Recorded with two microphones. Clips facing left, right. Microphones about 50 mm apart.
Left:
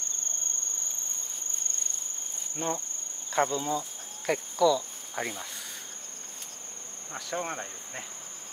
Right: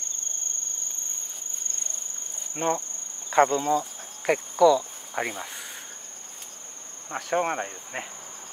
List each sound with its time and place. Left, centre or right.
2.5 s speech: right
3.3 s cricket: right
4.3 s speech: centre
7.2 s speech: right